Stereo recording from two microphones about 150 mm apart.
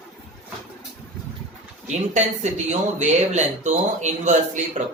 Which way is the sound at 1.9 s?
50° right (ahead or behind).